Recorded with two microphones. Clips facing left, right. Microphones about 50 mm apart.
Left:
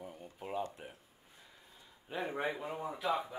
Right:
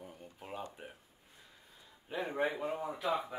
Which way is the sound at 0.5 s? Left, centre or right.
Centre.